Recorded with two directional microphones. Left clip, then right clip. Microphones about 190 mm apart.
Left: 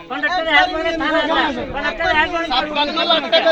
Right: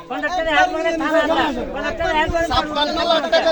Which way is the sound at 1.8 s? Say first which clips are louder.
Left 3 dB; 85° right.